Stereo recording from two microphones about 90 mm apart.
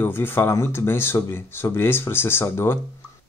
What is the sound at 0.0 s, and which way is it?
Speech, 25° left (ahead or behind).